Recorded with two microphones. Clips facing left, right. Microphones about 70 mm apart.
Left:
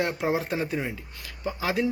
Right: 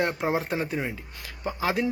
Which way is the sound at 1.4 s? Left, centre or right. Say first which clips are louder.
Right 1 dB; right.